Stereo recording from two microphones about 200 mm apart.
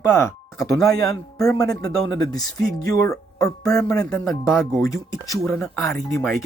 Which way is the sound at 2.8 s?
15° left (ahead or behind).